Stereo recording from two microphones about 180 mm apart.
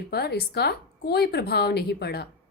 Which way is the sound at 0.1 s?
60° left (ahead or behind).